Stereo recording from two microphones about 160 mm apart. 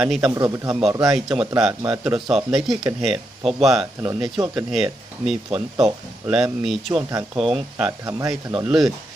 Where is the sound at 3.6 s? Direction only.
Centre (ahead or behind).